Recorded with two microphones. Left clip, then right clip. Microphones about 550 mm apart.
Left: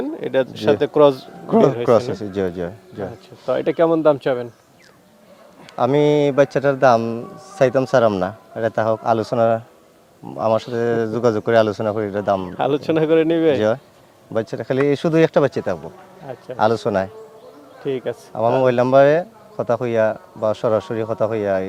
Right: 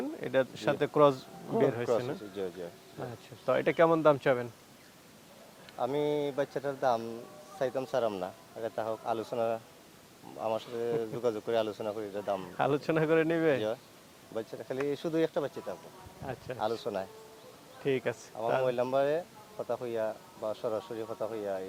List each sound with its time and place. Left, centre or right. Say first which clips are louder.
0.0 s speech: left 10 dB; centre
1.9 s speech: left 15 dB; left
3.4 s speech: left 9 dB; right
5.7 s speech: left 15 dB; left
12.5 s speech: left 11 dB; right
14.3 s speech: left 16 dB; left
16.6 s speech: left 17 dB; left
17.8 s speech: left 8 dB; right
18.6 s speech: left 18 dB; left